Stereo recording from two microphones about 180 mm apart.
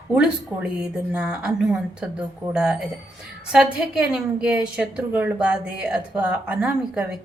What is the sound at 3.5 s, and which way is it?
A woman's voice, 5° right (ahead or behind).